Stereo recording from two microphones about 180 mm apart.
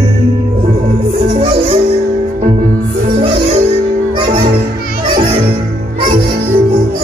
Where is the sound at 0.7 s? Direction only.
35° right (ahead or behind).